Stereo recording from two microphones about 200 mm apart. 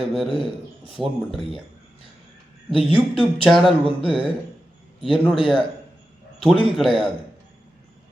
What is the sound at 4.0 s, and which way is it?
Speech, 25° right (ahead or behind).